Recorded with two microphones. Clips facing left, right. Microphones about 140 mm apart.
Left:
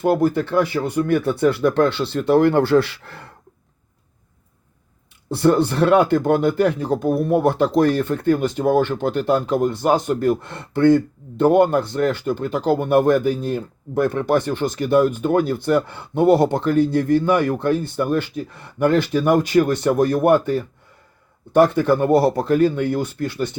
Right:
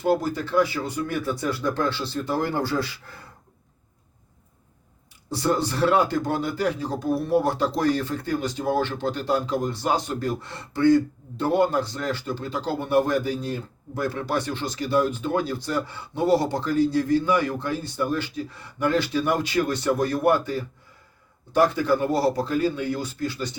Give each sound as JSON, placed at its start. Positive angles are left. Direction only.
{"t": 0.0, "sound": "speech", "side_deg": 55}
{"t": 5.3, "sound": "speech", "side_deg": 60}